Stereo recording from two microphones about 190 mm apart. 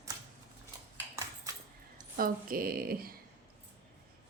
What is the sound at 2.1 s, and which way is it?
A woman's voice, 50° right (ahead or behind).